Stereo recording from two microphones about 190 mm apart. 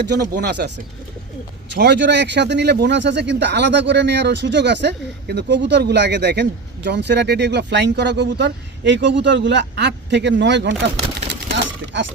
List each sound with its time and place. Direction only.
0.1 s speech: 55° right (ahead or behind)
1.7 s speech: 65° right (ahead or behind)
11.4 s a sound: 65° right (ahead or behind)